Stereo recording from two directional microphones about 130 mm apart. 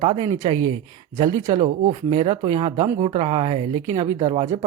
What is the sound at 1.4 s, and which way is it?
Speech, 65° right (ahead or behind).